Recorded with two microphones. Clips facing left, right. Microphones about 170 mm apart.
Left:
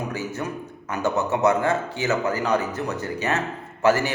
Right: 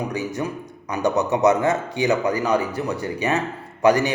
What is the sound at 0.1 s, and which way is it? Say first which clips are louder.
A man's voice: right 3 dB; 15° right (ahead or behind).